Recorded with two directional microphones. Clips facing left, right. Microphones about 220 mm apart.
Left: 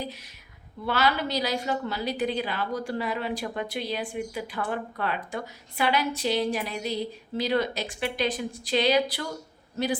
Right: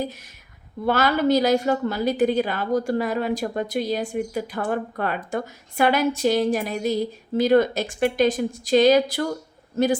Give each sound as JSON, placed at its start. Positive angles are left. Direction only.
{"t": 0.9, "sound": "a woman's voice", "side_deg": -50}